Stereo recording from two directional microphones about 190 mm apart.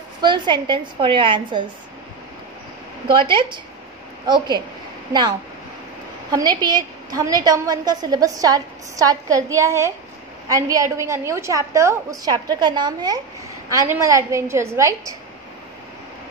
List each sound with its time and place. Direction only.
0.2 s a woman's voice: 25° right (ahead or behind)
3.1 s a woman's voice: 25° right (ahead or behind)
6.3 s a woman's voice: 20° right (ahead or behind)